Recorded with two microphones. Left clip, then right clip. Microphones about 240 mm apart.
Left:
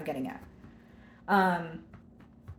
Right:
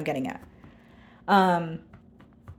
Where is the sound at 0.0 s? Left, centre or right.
Right.